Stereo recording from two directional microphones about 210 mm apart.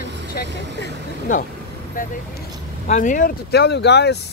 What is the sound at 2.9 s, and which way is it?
Speech, 35° left (ahead or behind).